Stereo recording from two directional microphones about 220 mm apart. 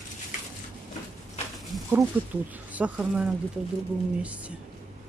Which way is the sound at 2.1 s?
10° right (ahead or behind).